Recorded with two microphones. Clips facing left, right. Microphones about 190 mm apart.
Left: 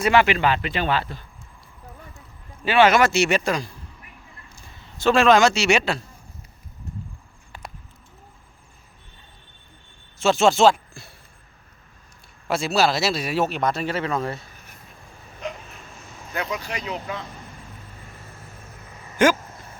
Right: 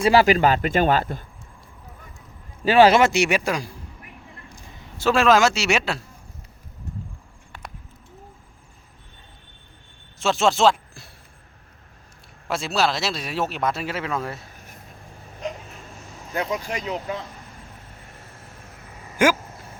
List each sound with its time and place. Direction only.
0.0 s speech: 35° right (ahead or behind)
2.6 s a man's voice: 35° right (ahead or behind)
3.0 s a man's voice: 15° right (ahead or behind)
4.4 s a sound: 20° right (ahead or behind)
4.9 s speech: 5° right (ahead or behind)
10.2 s speech: centre (ahead or behind)
12.5 s speech: centre (ahead or behind)
15.4 s a sound: 40° right (ahead or behind)
16.3 s speech: 45° right (ahead or behind)
19.1 s a sound: 10° right (ahead or behind)